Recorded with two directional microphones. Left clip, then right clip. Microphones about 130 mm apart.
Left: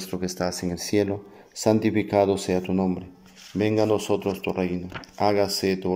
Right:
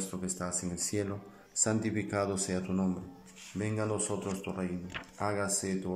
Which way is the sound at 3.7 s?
40° left (ahead or behind).